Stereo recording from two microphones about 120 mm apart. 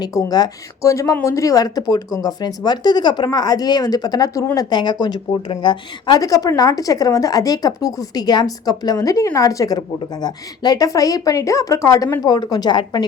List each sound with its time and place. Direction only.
0.0 s a woman's voice: 30° left (ahead or behind)